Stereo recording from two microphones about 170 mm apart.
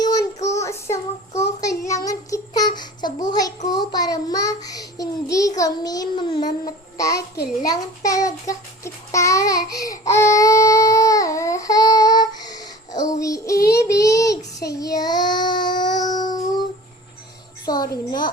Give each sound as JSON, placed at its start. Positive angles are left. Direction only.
{"t": 0.0, "sound": "child singing", "side_deg": 20}
{"t": 2.7, "sound": "babbling", "side_deg": 25}
{"t": 3.7, "sound": "child singing", "side_deg": 25}
{"t": 17.7, "sound": "a sound", "side_deg": 25}